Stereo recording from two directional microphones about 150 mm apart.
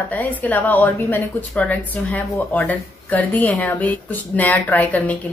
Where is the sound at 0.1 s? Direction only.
10° left (ahead or behind).